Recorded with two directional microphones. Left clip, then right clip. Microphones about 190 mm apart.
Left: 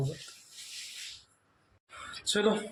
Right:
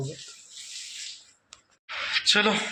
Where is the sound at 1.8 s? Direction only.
15° left (ahead or behind).